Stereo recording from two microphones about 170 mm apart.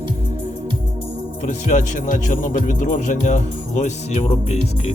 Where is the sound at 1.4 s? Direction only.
45° left (ahead or behind).